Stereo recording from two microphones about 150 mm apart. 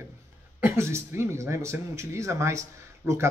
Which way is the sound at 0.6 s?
15° right (ahead or behind).